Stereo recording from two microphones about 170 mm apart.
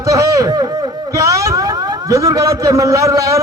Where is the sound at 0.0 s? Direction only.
20° right (ahead or behind).